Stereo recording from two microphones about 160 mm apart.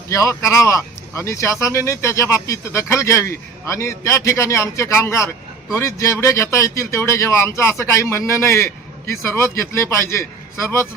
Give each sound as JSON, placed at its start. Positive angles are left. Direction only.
{"t": 0.1, "sound": "speech", "side_deg": 20}